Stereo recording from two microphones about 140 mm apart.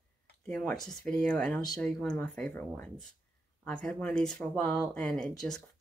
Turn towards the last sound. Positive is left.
turn(degrees=5)  # may be behind; listen again after turning